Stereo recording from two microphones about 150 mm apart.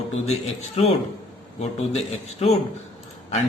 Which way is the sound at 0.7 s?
45° left (ahead or behind).